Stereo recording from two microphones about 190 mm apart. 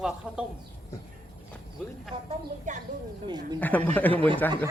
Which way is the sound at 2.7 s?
40° right (ahead or behind).